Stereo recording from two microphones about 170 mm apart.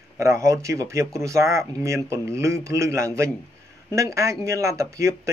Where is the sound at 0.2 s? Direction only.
15° right (ahead or behind).